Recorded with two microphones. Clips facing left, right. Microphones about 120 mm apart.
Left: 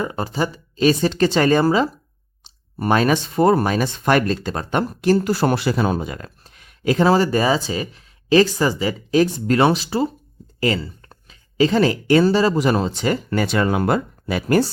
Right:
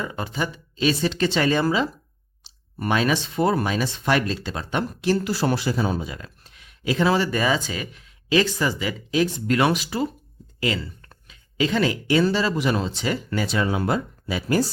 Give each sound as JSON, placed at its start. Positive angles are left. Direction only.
{"t": 0.0, "sound": "speech", "side_deg": 40}
{"t": 11.0, "sound": "speech", "side_deg": 30}